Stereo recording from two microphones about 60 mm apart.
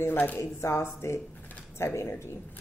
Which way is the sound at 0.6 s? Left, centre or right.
Left.